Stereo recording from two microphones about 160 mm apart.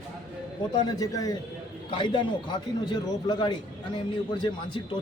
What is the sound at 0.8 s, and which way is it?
A man's voice, 25° left (ahead or behind).